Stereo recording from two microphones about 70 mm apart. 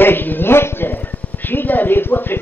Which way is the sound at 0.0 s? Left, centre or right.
Left.